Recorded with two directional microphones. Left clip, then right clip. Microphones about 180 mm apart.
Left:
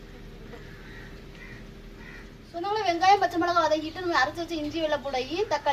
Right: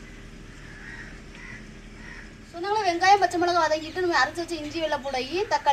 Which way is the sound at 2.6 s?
15° left (ahead or behind).